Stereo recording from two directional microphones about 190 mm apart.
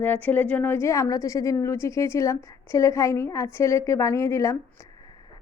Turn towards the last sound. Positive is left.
turn(degrees=15)  # may be behind; listen again after turning